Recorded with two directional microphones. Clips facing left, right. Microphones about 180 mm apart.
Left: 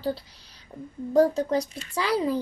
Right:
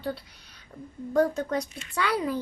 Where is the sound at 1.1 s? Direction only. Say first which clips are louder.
Left 4 dB; 30° left (ahead or behind).